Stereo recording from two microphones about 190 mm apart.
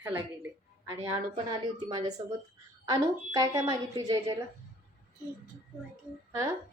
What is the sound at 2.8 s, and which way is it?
A woman's voice, 20° right (ahead or behind).